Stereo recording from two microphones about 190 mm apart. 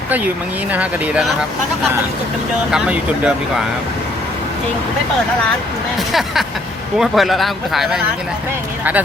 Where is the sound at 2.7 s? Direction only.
5° right (ahead or behind).